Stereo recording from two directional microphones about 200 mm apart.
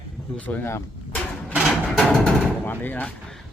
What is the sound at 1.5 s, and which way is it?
Music, 5° right (ahead or behind).